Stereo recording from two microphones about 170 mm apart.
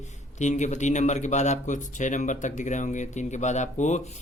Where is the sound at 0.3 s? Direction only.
45° left (ahead or behind).